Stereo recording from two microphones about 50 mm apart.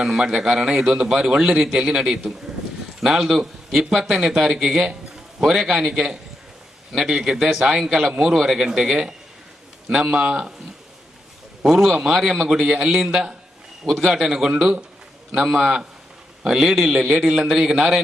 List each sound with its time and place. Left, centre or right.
0.0 s a man's voice: centre
11.6 s a man's voice: centre
14.5 s a man's voice: centre
15.4 s a man's voice: centre
16.6 s a man's voice: centre